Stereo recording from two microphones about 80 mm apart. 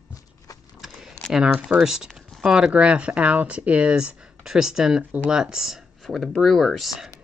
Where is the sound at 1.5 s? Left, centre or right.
Centre.